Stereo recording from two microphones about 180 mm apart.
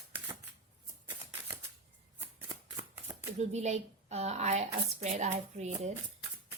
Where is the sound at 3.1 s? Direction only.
15° right (ahead or behind).